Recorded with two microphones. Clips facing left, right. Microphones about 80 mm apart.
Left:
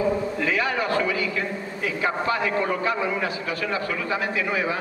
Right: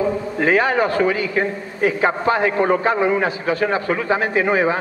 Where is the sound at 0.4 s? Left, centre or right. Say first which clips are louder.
Right 8 dB; right.